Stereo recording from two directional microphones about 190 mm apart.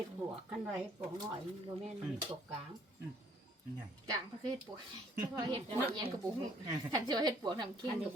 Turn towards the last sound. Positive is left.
turn(degrees=-25)  # may be behind; listen again after turning